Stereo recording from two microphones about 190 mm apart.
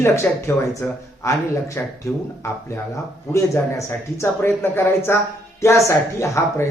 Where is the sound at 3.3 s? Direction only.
15° left (ahead or behind).